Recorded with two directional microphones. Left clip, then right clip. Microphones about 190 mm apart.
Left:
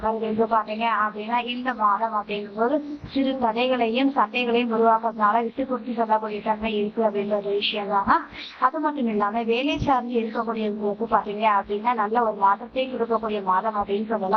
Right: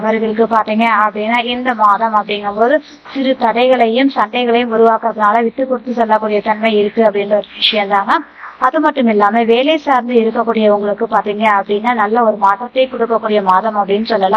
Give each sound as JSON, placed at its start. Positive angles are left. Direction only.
{"t": 0.5, "sound": "a woman's voice", "side_deg": -30}